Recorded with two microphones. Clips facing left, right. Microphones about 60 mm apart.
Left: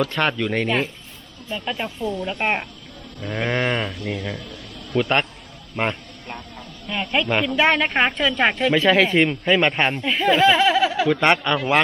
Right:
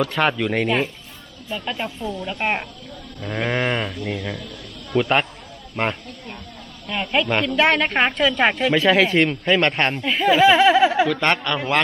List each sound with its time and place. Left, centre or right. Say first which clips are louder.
0.0 s a woman's voice: right 1 dB; centre
10.5 s speech: right 3 dB; centre
11.1 s speech: left 2 dB; centre